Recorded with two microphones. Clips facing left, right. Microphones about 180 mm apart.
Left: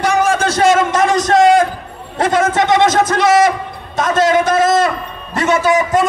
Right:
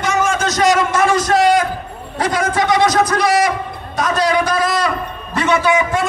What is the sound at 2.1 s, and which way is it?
A man's voice, 25° left (ahead or behind).